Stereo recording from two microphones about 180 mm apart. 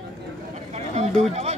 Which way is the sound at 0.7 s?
40° right (ahead or behind).